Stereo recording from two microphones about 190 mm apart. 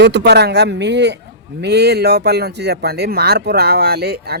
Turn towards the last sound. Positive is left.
turn(degrees=-55)  # may be behind; listen again after turning